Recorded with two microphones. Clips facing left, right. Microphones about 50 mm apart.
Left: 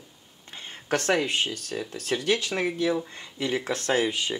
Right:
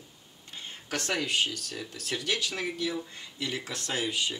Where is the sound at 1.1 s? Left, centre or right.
Left.